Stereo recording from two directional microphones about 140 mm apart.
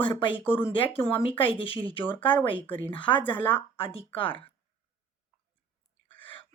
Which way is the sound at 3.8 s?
40° left (ahead or behind).